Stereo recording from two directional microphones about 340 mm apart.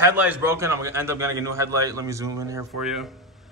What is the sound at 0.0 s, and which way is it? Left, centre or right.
Speech, centre.